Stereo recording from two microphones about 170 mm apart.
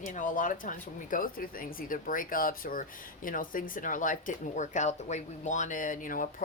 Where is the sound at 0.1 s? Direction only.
50° left (ahead or behind).